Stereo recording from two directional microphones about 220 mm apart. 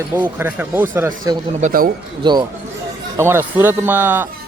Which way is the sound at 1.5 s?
35° right (ahead or behind).